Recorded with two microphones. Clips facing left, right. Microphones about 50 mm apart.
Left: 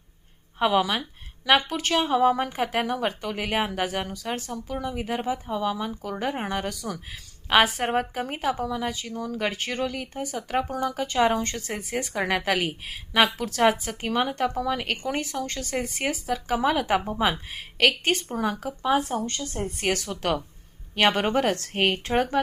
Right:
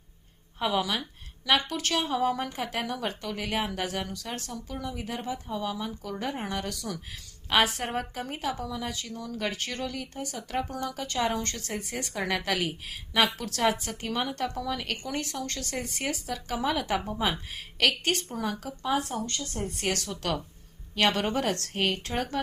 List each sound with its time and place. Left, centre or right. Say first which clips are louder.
0.6 s a woman's voice: left 5 dB; left
12.1 s a woman's voice: left 4 dB; left